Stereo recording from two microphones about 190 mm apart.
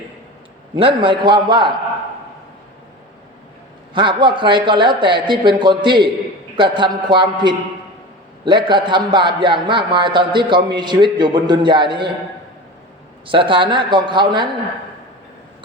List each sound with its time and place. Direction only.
0.8 s a man's voice: 25° right (ahead or behind)
3.9 s a man's voice: 25° right (ahead or behind)
13.2 s a man's voice: 25° right (ahead or behind)